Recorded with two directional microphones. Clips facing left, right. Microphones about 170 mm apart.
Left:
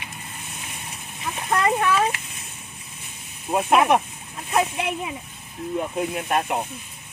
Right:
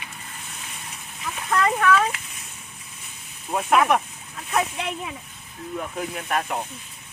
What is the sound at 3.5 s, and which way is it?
Speech, 25° left (ahead or behind).